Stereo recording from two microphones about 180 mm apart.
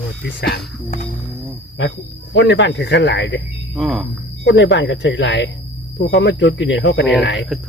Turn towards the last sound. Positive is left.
turn(degrees=80)